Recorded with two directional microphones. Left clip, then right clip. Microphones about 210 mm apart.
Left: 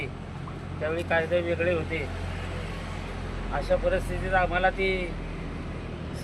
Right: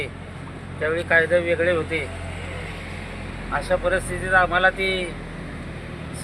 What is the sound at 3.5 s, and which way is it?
Speech, centre (ahead or behind).